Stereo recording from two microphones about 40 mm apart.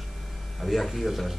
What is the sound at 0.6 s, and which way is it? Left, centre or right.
Speech, centre.